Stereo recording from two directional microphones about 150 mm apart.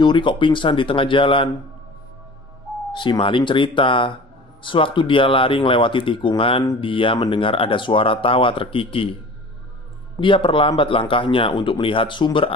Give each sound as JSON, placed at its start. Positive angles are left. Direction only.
{"t": 0.0, "sound": "speech", "side_deg": 30}
{"t": 2.9, "sound": "speech", "side_deg": 30}
{"t": 10.2, "sound": "speech", "side_deg": 35}